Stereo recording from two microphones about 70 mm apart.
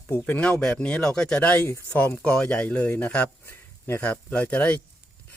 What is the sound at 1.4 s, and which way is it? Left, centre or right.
Speech, left.